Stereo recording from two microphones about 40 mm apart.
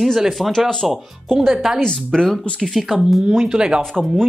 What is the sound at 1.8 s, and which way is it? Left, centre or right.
Speech, centre.